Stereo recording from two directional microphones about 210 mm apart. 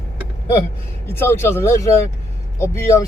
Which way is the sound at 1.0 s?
10° left (ahead or behind).